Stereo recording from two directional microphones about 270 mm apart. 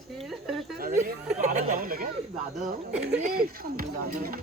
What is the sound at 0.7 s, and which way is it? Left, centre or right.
Speech, right.